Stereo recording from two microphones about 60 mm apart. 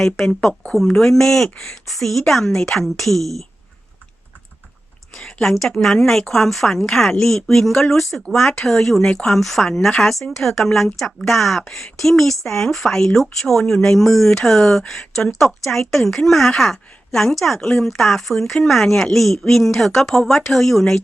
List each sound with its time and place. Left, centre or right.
0.3 s speech: centre
5.1 s a sound: centre
5.8 s speech: centre